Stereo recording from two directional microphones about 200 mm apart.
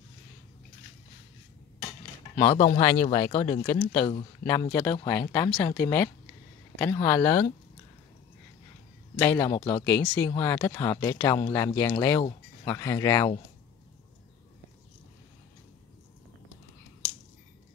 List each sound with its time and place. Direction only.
2.3 s speech: 25° left (ahead or behind)
4.5 s speech: 20° left (ahead or behind)
9.2 s speech: 10° left (ahead or behind)